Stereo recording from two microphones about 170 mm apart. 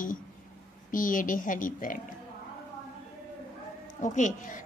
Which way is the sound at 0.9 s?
50° left (ahead or behind).